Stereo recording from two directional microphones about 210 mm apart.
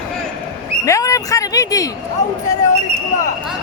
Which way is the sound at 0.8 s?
15° left (ahead or behind).